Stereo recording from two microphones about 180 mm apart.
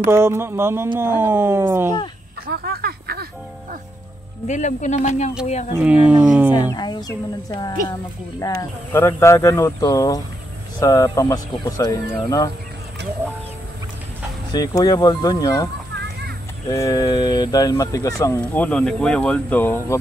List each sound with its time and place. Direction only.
0.0 s speech: 15° right (ahead or behind)
2.4 s a sound: 60° right (ahead or behind)
4.5 s speech: 40° left (ahead or behind)
5.8 s speech: 10° right (ahead or behind)
6.7 s speech: 20° left (ahead or behind)
14.5 s speech: 20° left (ahead or behind)